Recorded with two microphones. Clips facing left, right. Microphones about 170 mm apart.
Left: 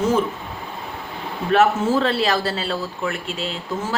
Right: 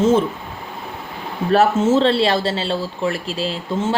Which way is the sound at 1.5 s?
25° right (ahead or behind).